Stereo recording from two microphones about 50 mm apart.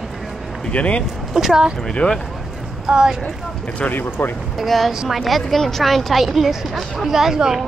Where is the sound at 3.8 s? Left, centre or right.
Left.